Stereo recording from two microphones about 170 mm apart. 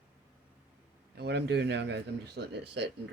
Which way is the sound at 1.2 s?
80° right.